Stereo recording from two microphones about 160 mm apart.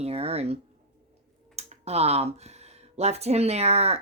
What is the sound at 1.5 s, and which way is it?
A woman's voice, 40° right (ahead or behind).